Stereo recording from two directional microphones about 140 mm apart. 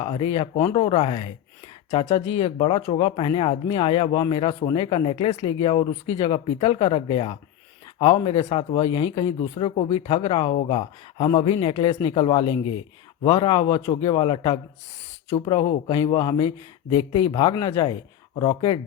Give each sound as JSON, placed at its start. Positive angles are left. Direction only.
{"t": 0.0, "sound": "speech", "side_deg": 35}
{"t": 8.4, "sound": "speech", "side_deg": 55}
{"t": 8.8, "sound": "speech", "side_deg": 45}